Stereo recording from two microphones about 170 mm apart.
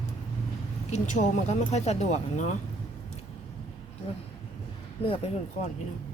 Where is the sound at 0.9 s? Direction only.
45° left (ahead or behind).